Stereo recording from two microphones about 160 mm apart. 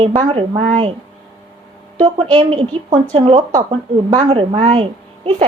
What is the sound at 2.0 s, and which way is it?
Speech, 35° right (ahead or behind).